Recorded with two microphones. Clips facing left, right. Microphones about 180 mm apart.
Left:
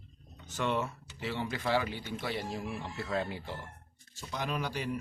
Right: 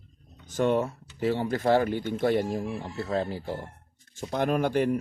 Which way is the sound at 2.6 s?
40° right (ahead or behind).